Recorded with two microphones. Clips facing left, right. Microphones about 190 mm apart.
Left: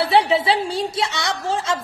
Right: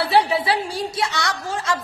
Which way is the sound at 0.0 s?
20° left (ahead or behind).